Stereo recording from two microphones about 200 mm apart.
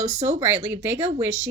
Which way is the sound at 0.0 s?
10° right (ahead or behind).